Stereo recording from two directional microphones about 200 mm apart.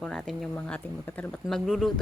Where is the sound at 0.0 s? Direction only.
Centre (ahead or behind).